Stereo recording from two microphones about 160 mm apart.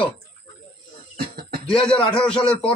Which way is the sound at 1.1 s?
70° right (ahead or behind).